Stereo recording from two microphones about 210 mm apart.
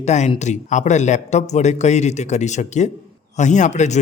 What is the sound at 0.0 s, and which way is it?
A man's voice, 30° left (ahead or behind).